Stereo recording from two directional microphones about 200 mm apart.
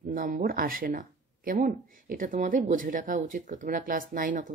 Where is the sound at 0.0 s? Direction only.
45° right (ahead or behind).